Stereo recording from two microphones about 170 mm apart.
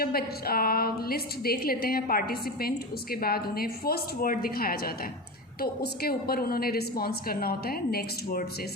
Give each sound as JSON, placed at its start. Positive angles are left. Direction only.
{"t": 0.0, "sound": "a woman's voice", "side_deg": 65}